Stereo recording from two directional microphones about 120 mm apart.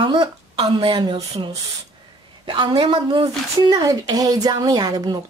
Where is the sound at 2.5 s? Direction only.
40° right (ahead or behind).